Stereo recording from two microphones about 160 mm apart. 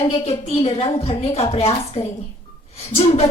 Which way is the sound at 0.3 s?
40° left (ahead or behind).